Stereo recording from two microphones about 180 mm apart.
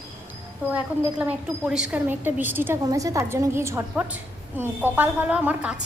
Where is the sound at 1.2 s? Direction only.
10° right (ahead or behind).